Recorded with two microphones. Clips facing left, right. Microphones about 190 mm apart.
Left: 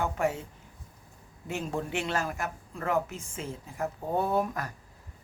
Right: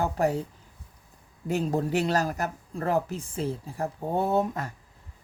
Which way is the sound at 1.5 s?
40° right (ahead or behind).